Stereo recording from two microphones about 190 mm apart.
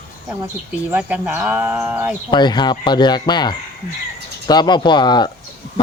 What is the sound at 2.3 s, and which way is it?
Speech, 25° left (ahead or behind).